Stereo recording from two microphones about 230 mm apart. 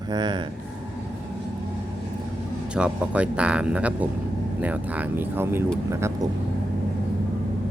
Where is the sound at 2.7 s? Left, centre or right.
Centre.